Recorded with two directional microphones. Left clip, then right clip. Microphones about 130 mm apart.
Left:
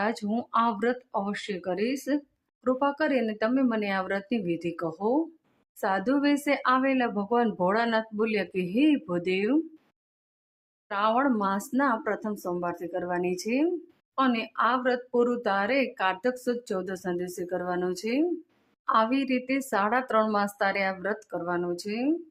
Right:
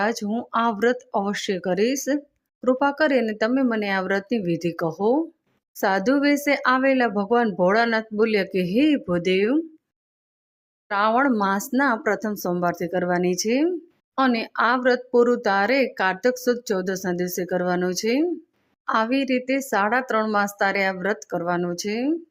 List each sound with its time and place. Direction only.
0.0 s speech: 20° right (ahead or behind)
10.8 s speech: 35° right (ahead or behind)
18.9 s speech: 20° right (ahead or behind)